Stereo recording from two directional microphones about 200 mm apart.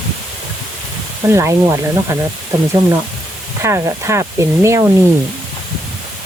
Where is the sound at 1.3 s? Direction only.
15° right (ahead or behind).